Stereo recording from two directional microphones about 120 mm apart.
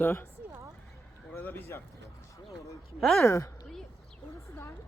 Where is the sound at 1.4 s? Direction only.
15° left (ahead or behind).